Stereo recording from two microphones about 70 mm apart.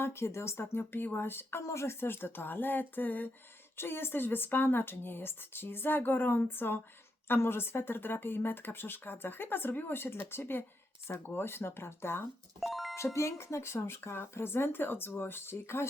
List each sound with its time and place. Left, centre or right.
0.0 s speech: left
12.5 s music: centre
13.1 s speech: left